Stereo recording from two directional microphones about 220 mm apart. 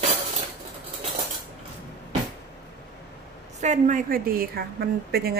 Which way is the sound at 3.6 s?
35° right (ahead or behind).